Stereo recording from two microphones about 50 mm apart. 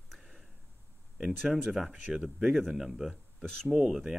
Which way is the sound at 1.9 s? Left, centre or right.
Centre.